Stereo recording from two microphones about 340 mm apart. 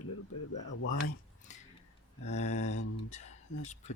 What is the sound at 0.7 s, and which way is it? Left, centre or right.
Speech, left.